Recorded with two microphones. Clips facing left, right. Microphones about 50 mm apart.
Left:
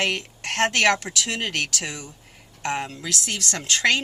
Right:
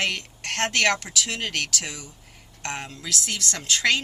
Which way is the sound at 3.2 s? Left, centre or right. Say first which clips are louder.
Left 2 dB; left.